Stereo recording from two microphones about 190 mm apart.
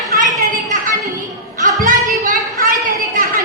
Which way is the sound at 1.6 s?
40° right (ahead or behind).